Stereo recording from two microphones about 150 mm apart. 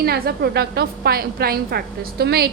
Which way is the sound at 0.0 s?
90° right.